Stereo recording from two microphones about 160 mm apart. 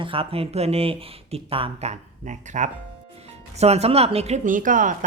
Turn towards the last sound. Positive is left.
turn(degrees=-55)  # may be behind; listen again after turning